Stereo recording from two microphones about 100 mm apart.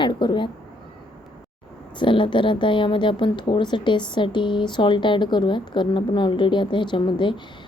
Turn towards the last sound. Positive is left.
turn(degrees=50)  # may be behind; listen again after turning